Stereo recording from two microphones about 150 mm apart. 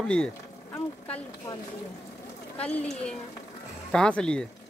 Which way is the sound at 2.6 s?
10° left (ahead or behind).